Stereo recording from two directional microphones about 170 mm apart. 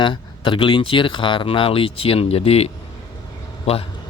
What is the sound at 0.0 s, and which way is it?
A man's voice, 30° left (ahead or behind).